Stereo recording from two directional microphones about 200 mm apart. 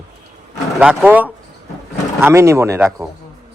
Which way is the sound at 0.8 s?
5° right (ahead or behind).